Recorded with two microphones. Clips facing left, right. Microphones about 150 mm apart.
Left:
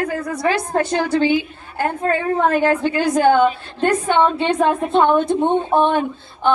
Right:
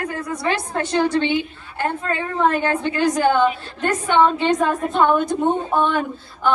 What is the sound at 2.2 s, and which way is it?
A woman's voice, 35° left (ahead or behind).